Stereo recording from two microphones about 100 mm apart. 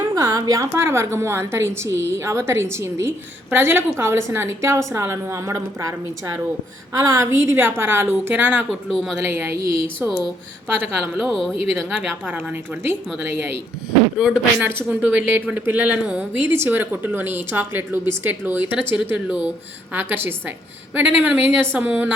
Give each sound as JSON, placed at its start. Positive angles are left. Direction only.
{"t": 0.1, "sound": "a woman's voice", "side_deg": -35}
{"t": 8.9, "sound": "speech", "side_deg": 0}
{"t": 9.1, "sound": "a woman's voice", "side_deg": -25}
{"t": 11.2, "sound": "speech", "side_deg": 0}
{"t": 12.2, "sound": "speech", "side_deg": -15}
{"t": 14.2, "sound": "a woman's voice", "side_deg": -5}